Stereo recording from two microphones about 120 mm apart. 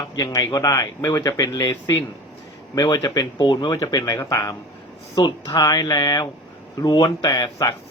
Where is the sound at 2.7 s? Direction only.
30° left (ahead or behind).